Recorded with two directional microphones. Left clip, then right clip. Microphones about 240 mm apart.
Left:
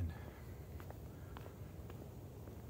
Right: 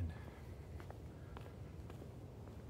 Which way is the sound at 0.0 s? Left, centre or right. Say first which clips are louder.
Left 1 dB; centre.